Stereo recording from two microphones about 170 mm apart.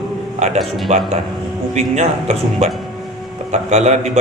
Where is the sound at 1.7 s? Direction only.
40° right (ahead or behind).